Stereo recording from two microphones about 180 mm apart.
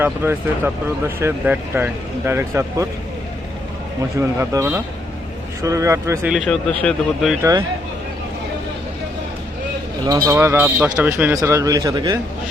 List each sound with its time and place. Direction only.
0.0 s speech: 10° right (ahead or behind)
4.2 s speech: 15° right (ahead or behind)
6.3 s speech: 5° left (ahead or behind)
10.1 s speech: 20° right (ahead or behind)